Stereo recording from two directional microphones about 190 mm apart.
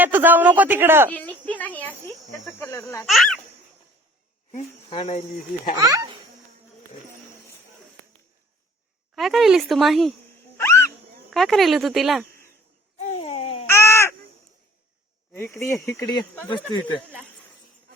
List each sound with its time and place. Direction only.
0.0 s speech: 10° right (ahead or behind)
1.1 s a sound: 10° left (ahead or behind)
2.5 s speech: 10° left (ahead or behind)
3.1 s speech: centre (ahead or behind)
4.9 s speech: 30° left (ahead or behind)
5.8 s a child's voice: 20° right (ahead or behind)
9.1 s speech: centre (ahead or behind)
10.6 s owl: 15° left (ahead or behind)
11.3 s speech: centre (ahead or behind)
13.1 s babbling: 30° left (ahead or behind)
13.7 s caw: 15° left (ahead or behind)
15.3 s speech: 15° left (ahead or behind)